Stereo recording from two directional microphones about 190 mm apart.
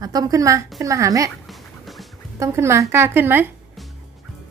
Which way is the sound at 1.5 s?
Centre (ahead or behind).